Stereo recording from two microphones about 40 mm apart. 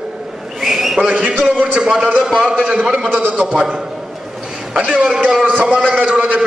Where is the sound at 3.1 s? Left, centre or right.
Right.